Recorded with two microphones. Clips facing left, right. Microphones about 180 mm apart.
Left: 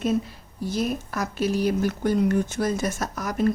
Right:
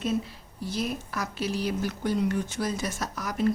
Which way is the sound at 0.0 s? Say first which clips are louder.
Left 4 dB; 50° left (ahead or behind).